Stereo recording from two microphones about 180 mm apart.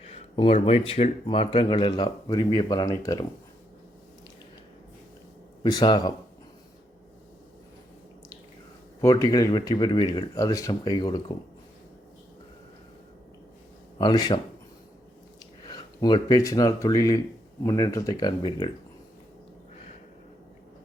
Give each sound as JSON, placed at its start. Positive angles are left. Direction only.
{"t": 0.0, "sound": "speech", "side_deg": 35}
{"t": 5.6, "sound": "speech", "side_deg": 20}
{"t": 9.0, "sound": "speech", "side_deg": 20}
{"t": 14.0, "sound": "speech", "side_deg": 20}
{"t": 15.6, "sound": "speech", "side_deg": 25}